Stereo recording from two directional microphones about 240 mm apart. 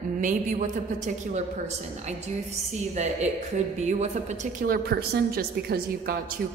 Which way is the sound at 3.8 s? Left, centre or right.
Right.